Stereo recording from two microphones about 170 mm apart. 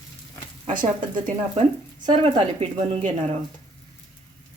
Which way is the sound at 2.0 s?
35° right (ahead or behind).